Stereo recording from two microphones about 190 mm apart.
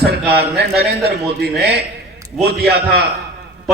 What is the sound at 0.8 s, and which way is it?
A man's voice, 60° right (ahead or behind).